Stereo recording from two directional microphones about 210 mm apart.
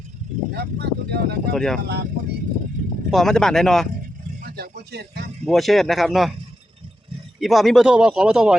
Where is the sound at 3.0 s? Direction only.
Centre (ahead or behind).